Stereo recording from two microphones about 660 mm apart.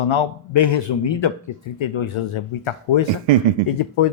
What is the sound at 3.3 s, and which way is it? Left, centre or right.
Speech, right.